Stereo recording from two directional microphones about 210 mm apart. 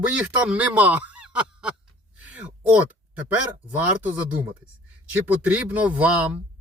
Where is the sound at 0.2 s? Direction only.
5° right (ahead or behind).